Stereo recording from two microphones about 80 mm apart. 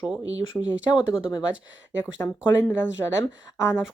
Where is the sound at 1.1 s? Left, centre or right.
Centre.